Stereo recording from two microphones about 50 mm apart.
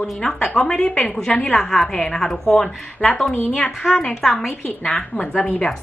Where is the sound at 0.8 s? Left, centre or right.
Left.